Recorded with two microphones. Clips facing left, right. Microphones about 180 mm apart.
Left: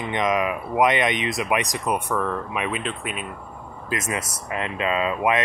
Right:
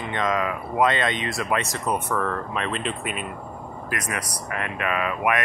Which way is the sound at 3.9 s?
25° left (ahead or behind).